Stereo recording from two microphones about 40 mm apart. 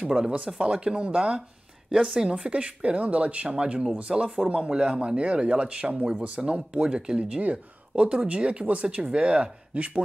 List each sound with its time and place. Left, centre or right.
0.0 s a woman's voice: centre
2.5 s speech: right